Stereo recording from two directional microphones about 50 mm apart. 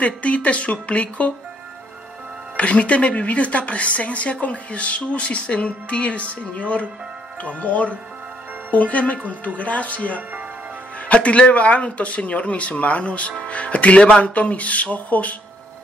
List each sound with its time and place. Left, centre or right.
0.0 s a woman's voice: left
2.5 s a woman's voice: left
14.3 s a woman's voice: left